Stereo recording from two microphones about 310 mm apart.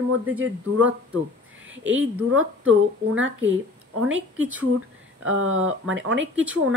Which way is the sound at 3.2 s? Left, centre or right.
Right.